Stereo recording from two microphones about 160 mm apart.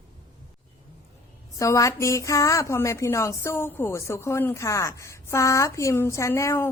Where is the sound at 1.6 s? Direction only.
20° left (ahead or behind).